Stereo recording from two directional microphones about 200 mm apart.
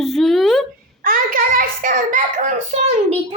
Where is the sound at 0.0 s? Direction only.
Centre (ahead or behind).